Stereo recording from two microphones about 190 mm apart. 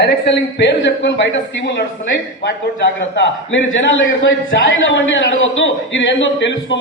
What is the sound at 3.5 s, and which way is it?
A man's voice, 80° left.